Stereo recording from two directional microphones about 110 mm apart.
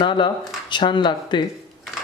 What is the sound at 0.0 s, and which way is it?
Speech, 45° left (ahead or behind).